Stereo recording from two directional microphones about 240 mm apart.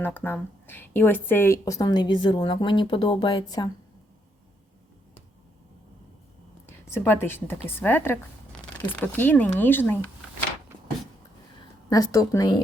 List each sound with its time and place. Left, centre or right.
0.0 s speech: centre
6.7 s speech: centre
11.9 s speech: centre